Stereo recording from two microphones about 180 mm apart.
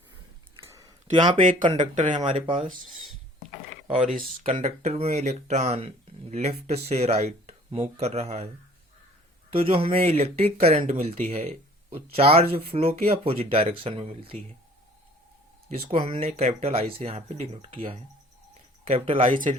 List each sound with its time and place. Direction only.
0.6 s a sound: 20° right (ahead or behind)
1.1 s speech: 25° right (ahead or behind)
2.0 s speech: 45° right (ahead or behind)
3.9 s speech: 45° right (ahead or behind)
9.6 s speech: 30° right (ahead or behind)
15.7 s speech: 30° right (ahead or behind)